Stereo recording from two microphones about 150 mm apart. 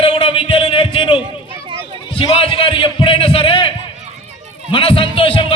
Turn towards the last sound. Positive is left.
turn(degrees=35)  # may be behind; listen again after turning